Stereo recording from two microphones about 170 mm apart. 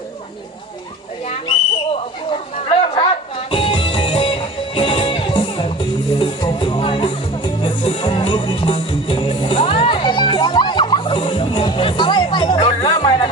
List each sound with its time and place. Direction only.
1.3 s whistle: 35° left (ahead or behind)
6.1 s music: 30° left (ahead or behind)